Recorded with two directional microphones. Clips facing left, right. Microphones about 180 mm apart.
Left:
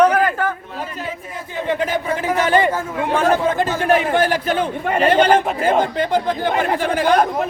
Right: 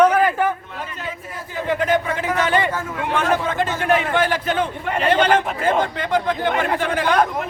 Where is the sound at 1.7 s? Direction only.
30° left (ahead or behind).